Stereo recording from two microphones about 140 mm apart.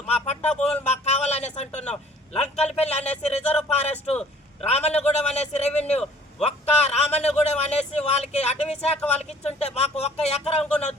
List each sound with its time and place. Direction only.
0.1 s a sound: 50° left (ahead or behind)
2.3 s a man's voice: 50° left (ahead or behind)
10.6 s speech: 10° left (ahead or behind)